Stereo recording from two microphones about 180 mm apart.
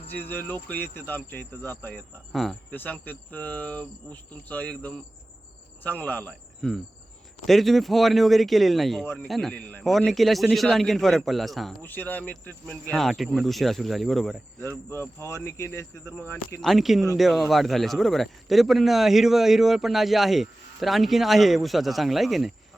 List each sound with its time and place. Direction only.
0.1 s speech: 10° left (ahead or behind)
2.3 s a man's voice: centre (ahead or behind)
14.8 s speech: 15° left (ahead or behind)
16.6 s a man's voice: centre (ahead or behind)